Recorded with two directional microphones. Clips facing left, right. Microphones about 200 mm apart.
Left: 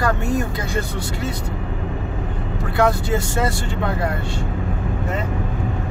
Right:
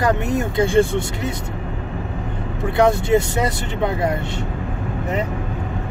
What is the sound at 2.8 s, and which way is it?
Speech, 20° right (ahead or behind).